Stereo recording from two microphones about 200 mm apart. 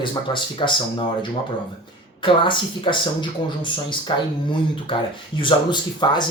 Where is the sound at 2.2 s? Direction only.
25° left (ahead or behind).